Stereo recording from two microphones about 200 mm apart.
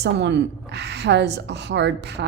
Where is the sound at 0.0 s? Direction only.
60° right (ahead or behind).